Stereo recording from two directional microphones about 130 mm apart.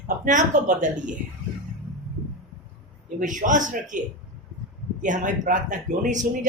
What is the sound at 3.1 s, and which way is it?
Speech, 80° right.